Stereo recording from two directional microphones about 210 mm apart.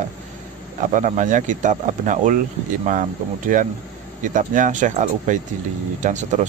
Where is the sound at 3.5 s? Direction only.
40° right (ahead or behind).